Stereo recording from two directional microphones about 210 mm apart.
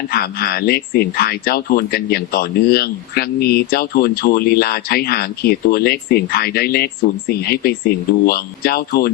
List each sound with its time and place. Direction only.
0.1 s speech: 45° left (ahead or behind)